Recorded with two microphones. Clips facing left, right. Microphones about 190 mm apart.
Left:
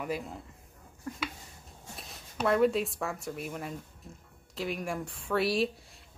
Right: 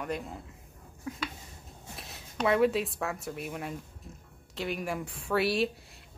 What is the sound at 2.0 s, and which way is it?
A woman's voice, centre (ahead or behind).